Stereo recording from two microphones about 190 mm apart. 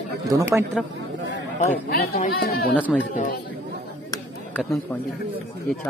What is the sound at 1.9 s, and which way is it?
Speech, 55° left (ahead or behind).